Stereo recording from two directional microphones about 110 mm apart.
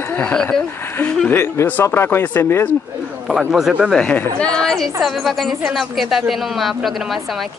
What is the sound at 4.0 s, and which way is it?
Speech, 10° left (ahead or behind).